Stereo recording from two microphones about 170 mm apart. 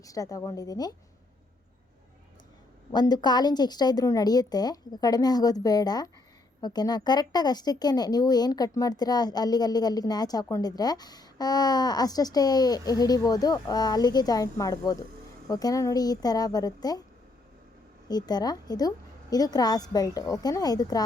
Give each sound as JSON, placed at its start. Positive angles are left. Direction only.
{"t": 0.0, "sound": "a woman's voice", "side_deg": 20}
{"t": 2.9, "sound": "a woman's voice", "side_deg": 25}
{"t": 18.1, "sound": "a woman's voice", "side_deg": 25}